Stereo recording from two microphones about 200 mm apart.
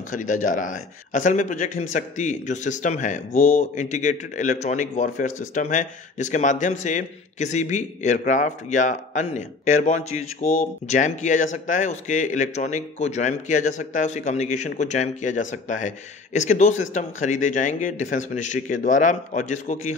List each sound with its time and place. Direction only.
0.1 s a man's voice: 40° left (ahead or behind)